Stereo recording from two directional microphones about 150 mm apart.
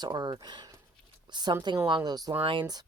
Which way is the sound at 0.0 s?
30° right (ahead or behind).